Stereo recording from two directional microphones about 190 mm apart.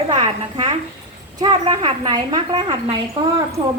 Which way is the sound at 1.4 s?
25° right (ahead or behind).